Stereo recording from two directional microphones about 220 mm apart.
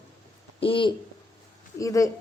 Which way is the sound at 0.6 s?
25° left (ahead or behind).